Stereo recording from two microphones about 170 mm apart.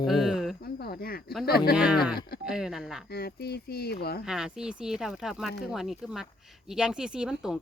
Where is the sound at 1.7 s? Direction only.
5° right (ahead or behind).